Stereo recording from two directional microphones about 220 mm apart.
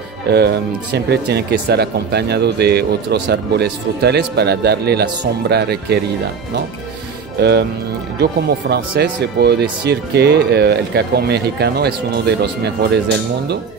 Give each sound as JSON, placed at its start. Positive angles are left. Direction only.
{"t": 0.3, "sound": "speech", "side_deg": -50}
{"t": 7.3, "sound": "speech", "side_deg": -50}